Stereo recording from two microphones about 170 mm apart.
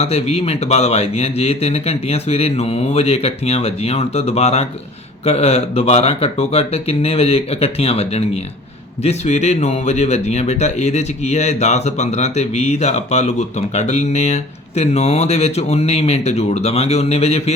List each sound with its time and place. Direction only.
0.0 s speech: 35° left (ahead or behind)